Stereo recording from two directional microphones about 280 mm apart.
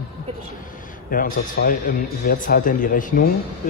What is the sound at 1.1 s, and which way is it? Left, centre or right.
Speech, left.